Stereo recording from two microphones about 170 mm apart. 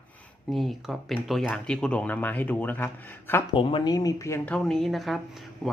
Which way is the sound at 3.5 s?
30° left (ahead or behind).